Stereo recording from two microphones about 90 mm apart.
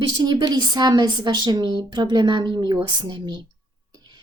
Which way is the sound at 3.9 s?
50° right (ahead or behind).